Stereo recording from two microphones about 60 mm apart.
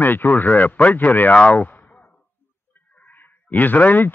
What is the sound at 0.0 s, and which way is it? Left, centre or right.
Speech, left.